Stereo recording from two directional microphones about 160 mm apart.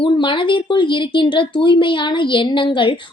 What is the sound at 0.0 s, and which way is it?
Speech, 30° left (ahead or behind).